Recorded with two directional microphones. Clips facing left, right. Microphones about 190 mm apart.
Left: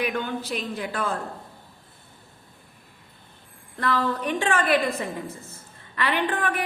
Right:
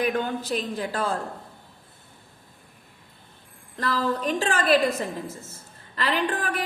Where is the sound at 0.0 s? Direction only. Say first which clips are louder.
Right 2 dB; 40° right (ahead or behind).